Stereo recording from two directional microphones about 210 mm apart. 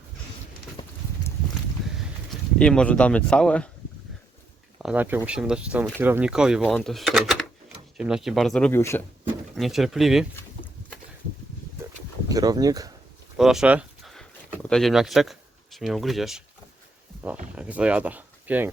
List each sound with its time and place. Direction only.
0.8 s clip-clop: 20° left (ahead or behind)
2.6 s speech: 5° left (ahead or behind)
4.8 s speech: 5° right (ahead or behind); by 9.0 s 10° left (ahead or behind)
9.6 s speech: centre (ahead or behind)
12.3 s speech: 20° right (ahead or behind)
13.3 s a sound: centre (ahead or behind)
17.5 s speech: 5° right (ahead or behind)